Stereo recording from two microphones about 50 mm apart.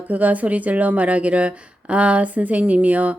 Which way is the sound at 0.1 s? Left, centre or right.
Right.